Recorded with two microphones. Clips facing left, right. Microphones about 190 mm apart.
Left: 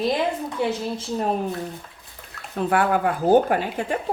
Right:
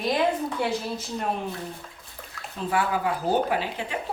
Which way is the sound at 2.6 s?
60° left (ahead or behind).